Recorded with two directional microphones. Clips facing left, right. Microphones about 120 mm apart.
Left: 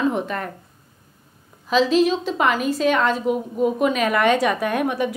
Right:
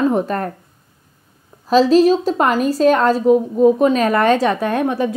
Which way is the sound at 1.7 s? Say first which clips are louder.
Right 6 dB; 40° right (ahead or behind).